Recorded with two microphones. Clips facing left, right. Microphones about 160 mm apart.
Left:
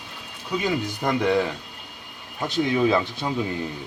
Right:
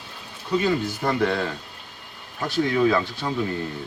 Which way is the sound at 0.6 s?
15° left (ahead or behind).